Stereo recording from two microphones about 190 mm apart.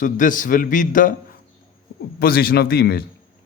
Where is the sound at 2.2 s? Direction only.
50° left (ahead or behind).